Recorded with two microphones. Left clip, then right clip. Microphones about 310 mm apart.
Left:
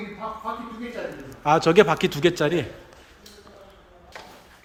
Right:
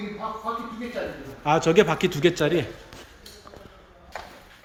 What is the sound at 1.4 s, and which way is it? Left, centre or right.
A man's voice, centre.